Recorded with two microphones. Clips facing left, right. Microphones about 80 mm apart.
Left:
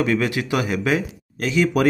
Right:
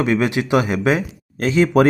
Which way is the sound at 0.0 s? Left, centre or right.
Right.